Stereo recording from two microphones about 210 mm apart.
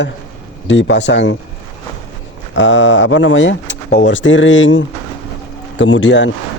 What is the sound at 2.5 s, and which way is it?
Speech, 60° left (ahead or behind).